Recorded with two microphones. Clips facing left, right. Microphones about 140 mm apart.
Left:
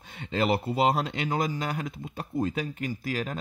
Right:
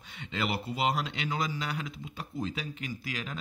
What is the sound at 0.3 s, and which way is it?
Speech, 45° left (ahead or behind).